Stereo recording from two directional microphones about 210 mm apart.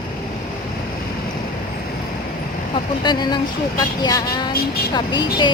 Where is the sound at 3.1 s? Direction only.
20° left (ahead or behind).